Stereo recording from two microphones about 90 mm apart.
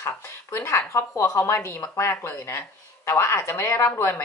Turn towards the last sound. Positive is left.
turn(degrees=25)  # may be behind; listen again after turning